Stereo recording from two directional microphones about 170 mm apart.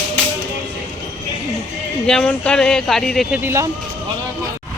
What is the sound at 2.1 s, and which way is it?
Speech, 5° left (ahead or behind).